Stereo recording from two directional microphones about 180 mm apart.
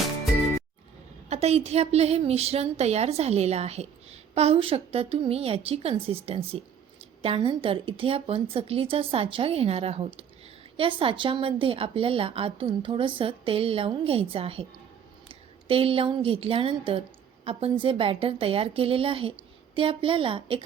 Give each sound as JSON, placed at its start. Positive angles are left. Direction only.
{"t": 1.3, "sound": "a woman's voice", "side_deg": -35}